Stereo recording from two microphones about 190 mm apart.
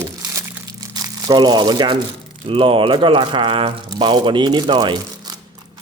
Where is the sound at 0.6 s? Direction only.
20° right (ahead or behind).